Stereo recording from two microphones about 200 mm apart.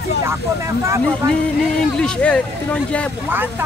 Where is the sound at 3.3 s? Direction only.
10° right (ahead or behind).